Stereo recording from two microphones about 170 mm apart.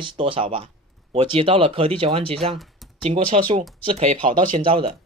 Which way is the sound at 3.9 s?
50° right (ahead or behind).